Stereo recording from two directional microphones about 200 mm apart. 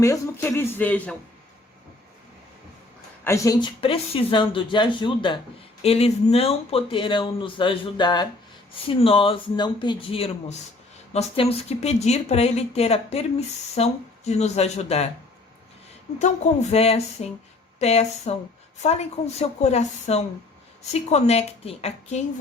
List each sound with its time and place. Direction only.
0.0 s speech: 15° left (ahead or behind)
3.2 s speech: 15° left (ahead or behind); by 15.0 s 30° left (ahead or behind)
16.1 s speech: 35° left (ahead or behind)